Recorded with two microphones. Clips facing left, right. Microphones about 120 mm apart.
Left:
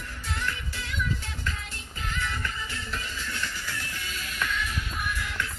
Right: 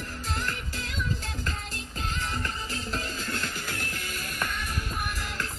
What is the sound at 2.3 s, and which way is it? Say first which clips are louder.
Music: right 1 dB; 35° right (ahead or behind).